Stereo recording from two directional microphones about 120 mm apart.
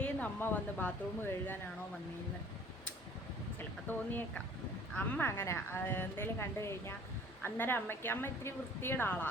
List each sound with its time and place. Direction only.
0.0 s speech: 15° left (ahead or behind)
3.8 s a woman's voice: 15° left (ahead or behind)